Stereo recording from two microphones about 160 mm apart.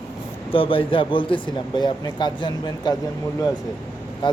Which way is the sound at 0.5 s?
35° left (ahead or behind).